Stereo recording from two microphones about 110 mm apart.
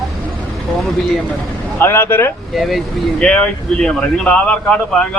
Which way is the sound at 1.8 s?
20° left (ahead or behind).